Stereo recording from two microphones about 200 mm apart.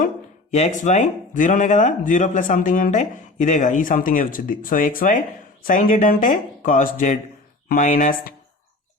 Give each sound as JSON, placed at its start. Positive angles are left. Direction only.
{"t": 0.5, "sound": "speech", "side_deg": 35}